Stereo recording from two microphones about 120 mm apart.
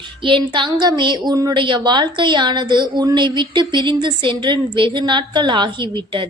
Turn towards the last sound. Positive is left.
turn(degrees=-40)  # may be behind; listen again after turning